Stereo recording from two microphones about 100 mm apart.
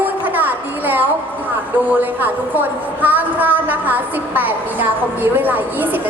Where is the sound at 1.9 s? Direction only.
20° right (ahead or behind).